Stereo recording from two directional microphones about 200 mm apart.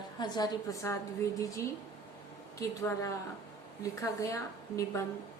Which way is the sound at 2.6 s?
15° left (ahead or behind).